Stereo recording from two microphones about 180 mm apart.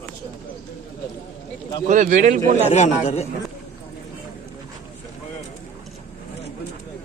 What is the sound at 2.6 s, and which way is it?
Speech, 40° left (ahead or behind).